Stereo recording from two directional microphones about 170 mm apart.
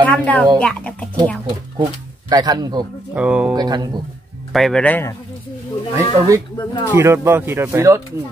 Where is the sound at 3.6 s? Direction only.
25° right (ahead or behind).